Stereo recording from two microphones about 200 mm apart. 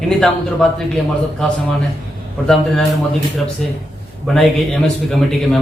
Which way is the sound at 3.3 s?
Centre (ahead or behind).